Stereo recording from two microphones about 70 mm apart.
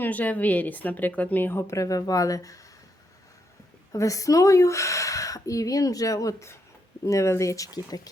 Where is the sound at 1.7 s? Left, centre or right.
Left.